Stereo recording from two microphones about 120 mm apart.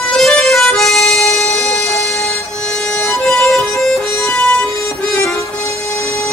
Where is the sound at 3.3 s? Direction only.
5° left (ahead or behind).